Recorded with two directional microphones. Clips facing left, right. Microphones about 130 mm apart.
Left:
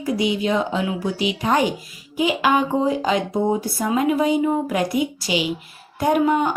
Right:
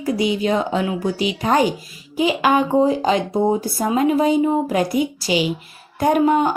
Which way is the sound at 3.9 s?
35° right (ahead or behind).